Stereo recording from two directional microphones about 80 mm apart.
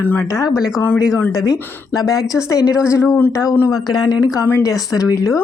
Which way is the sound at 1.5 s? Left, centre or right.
Left.